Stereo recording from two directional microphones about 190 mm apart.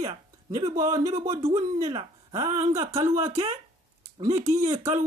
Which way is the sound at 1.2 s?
30° right (ahead or behind).